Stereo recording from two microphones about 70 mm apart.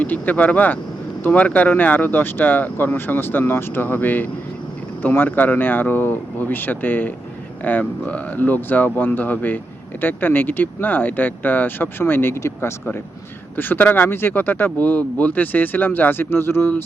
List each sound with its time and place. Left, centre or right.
0.0 s speech: left
13.6 s speech: left